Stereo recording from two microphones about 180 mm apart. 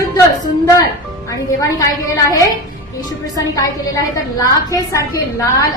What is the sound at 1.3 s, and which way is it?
A woman's voice, 20° left (ahead or behind).